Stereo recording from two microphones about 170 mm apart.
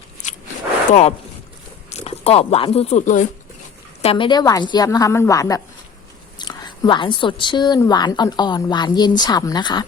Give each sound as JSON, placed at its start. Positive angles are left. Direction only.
{"t": 1.9, "sound": "speech", "side_deg": 40}
{"t": 4.0, "sound": "speech", "side_deg": 30}